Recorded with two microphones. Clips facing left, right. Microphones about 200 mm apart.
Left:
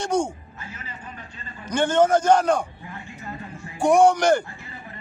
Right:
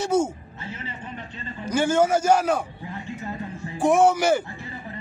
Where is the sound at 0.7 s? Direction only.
25° right (ahead or behind).